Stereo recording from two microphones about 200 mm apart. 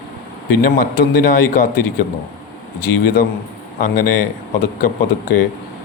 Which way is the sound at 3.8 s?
45° left (ahead or behind).